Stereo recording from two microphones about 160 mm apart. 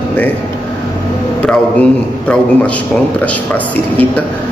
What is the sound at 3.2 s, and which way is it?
Speech, 10° left (ahead or behind).